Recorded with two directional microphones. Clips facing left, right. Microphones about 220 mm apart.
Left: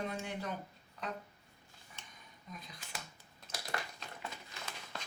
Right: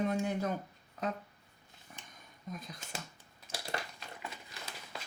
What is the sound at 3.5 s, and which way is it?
Crushing, 30° right (ahead or behind).